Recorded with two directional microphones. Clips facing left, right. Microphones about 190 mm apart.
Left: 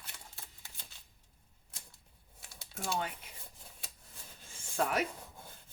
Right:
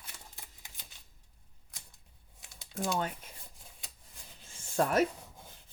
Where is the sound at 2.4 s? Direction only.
15° right (ahead or behind).